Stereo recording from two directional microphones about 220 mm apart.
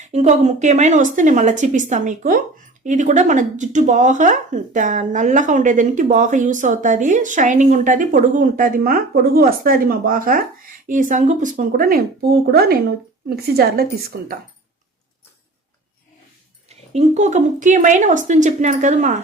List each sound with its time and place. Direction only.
0.0 s a woman's voice: 30° right (ahead or behind)
16.6 s speech: 30° right (ahead or behind)